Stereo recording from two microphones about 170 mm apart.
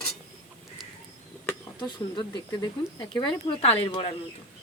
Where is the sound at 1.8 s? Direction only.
25° left (ahead or behind).